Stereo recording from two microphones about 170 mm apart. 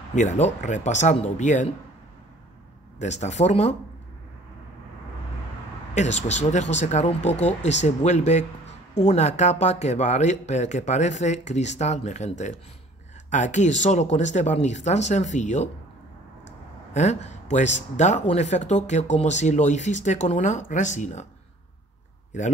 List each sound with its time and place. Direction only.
0.1 s speech: 45° left (ahead or behind)
3.0 s speech: 45° left (ahead or behind)
5.9 s speech: 40° left (ahead or behind)
16.9 s speech: 40° left (ahead or behind)